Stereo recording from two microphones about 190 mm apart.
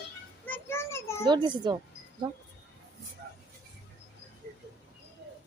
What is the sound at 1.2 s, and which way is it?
A child's voice, 25° right (ahead or behind).